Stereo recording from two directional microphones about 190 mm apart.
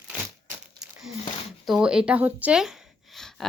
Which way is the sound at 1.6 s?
Centre (ahead or behind).